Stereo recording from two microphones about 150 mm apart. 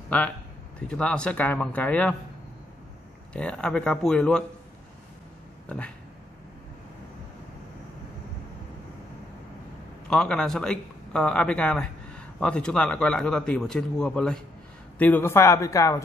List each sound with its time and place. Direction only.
0.8 s speech: 5° left (ahead or behind)
3.3 s speech: 5° left (ahead or behind)
5.7 s speech: 5° left (ahead or behind)
10.0 s a man's voice: 5° left (ahead or behind); by 16.0 s 20° left (ahead or behind)